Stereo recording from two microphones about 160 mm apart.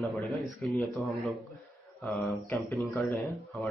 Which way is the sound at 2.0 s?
10° left (ahead or behind).